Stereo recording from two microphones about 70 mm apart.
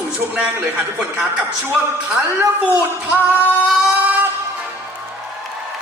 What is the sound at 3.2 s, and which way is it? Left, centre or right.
Singing, left.